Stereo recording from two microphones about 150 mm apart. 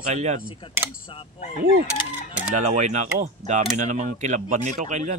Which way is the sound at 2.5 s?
50° right (ahead or behind).